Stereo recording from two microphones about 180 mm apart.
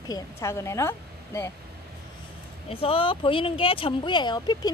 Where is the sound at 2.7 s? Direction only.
30° left (ahead or behind).